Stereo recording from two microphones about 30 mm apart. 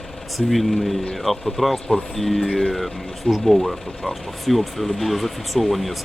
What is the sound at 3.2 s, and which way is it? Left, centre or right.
Speech, left.